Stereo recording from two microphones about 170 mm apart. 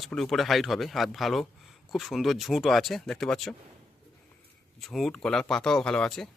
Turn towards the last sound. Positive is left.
turn(degrees=5)  # may be behind; listen again after turning